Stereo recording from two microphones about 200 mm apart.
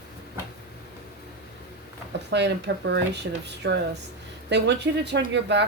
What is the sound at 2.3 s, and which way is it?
A woman's voice, 60° right (ahead or behind).